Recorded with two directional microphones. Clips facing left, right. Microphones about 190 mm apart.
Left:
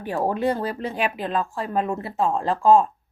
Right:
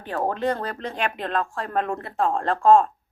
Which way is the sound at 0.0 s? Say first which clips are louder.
Left 2 dB; 10° left (ahead or behind).